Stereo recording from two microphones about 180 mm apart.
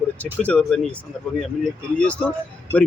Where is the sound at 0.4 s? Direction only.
5° left (ahead or behind).